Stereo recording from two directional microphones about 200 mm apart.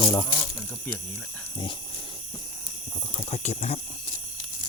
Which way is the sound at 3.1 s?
30° left (ahead or behind).